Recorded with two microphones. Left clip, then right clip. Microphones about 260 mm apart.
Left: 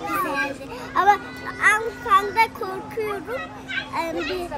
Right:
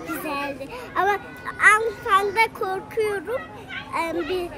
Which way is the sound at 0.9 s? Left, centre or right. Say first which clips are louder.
Left 4 dB; centre.